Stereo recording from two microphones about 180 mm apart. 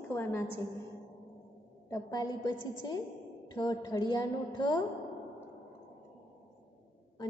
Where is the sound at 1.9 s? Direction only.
20° left (ahead or behind).